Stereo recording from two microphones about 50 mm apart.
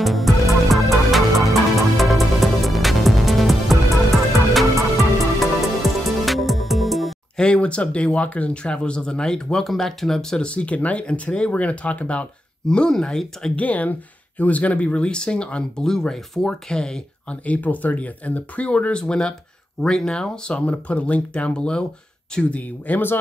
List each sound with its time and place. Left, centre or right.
0.0 s music: centre
5.4 s music: centre
7.3 s speech: left
10.4 s speech: left
12.6 s speech: centre
13.6 s speech: left
15.8 s speech: centre
17.5 s speech: left